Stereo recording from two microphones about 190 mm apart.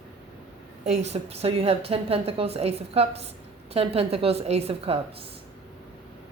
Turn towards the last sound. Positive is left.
turn(degrees=-30)  # may be behind; listen again after turning